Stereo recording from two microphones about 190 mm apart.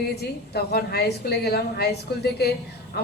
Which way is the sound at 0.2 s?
55° left (ahead or behind).